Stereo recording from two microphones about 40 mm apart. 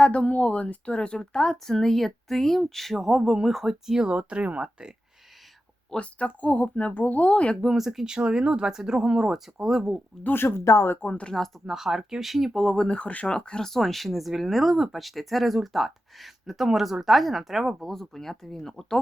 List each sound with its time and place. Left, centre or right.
0.0 s speech: left; by 4.0 s centre
4.0 s speech: right
6.0 s speech: left
7.5 s speech: centre
7.8 s speech: centre
8.0 s speech: right
10.3 s speech: left
11.1 s speech: left
11.7 s speech: centre
12.9 s speech: left
13.7 s speech: centre